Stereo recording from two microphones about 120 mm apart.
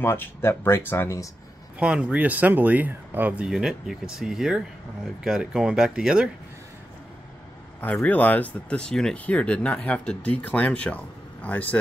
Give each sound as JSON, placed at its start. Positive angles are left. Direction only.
{"t": 0.0, "sound": "speech", "side_deg": 20}
{"t": 1.8, "sound": "speech", "side_deg": -10}
{"t": 7.8, "sound": "speech", "side_deg": 10}